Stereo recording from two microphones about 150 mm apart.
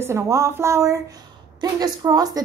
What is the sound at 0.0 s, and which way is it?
A woman's voice, 20° right (ahead or behind).